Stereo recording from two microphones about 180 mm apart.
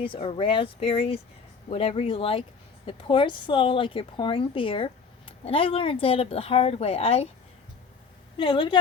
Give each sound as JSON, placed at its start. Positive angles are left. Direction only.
{"t": 0.0, "sound": "a woman's voice", "side_deg": 30}
{"t": 8.4, "sound": "a woman's voice", "side_deg": 30}